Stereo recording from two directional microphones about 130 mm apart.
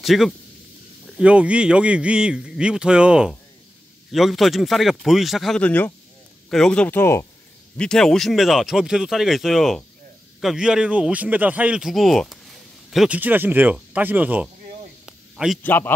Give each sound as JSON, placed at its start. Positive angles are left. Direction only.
{"t": 0.0, "sound": "a man's voice", "side_deg": 0}
{"t": 5.6, "sound": "speech", "side_deg": 10}
{"t": 6.9, "sound": "speech", "side_deg": 20}
{"t": 7.7, "sound": "speech", "side_deg": 5}
{"t": 13.2, "sound": "a man's voice", "side_deg": -15}
{"t": 15.0, "sound": "a sound", "side_deg": -5}
{"t": 15.6, "sound": "speech", "side_deg": 15}